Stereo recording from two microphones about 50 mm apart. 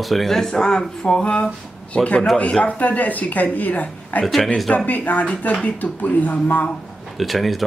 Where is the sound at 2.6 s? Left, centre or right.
Left.